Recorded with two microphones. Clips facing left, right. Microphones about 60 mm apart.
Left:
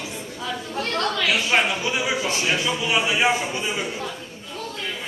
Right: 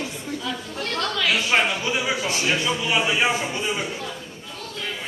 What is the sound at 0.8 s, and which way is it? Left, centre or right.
Chatter, left.